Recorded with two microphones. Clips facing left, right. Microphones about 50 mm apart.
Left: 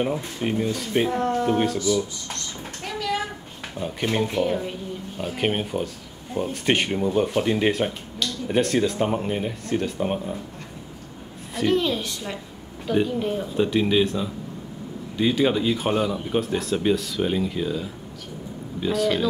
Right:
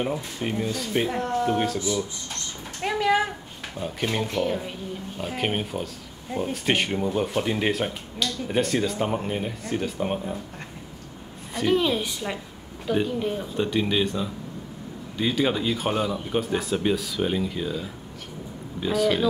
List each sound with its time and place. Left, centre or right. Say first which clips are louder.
0.0 s speech: left 3 dB; centre
2.3 s a sound: left 2 dB; right
3.7 s speech: left 2 dB; centre
11.5 s a woman's voice: even; centre
12.8 s speech: left 2 dB; centre